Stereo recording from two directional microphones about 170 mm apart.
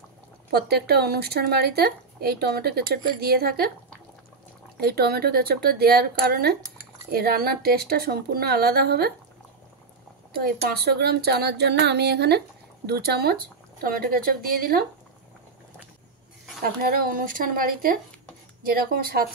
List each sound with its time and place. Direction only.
0.5 s speech: 70° right (ahead or behind)
4.7 s speech: 65° right (ahead or behind)
10.3 s speech: 65° right (ahead or behind)
16.8 s speech: 60° right (ahead or behind)